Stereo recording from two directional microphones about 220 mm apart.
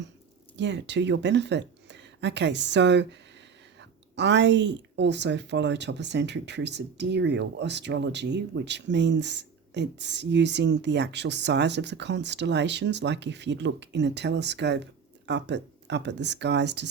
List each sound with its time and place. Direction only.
0.5 s speech: 55° right (ahead or behind)